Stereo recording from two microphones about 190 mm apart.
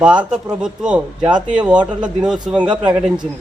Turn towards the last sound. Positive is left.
turn(degrees=-5)  # may be behind; listen again after turning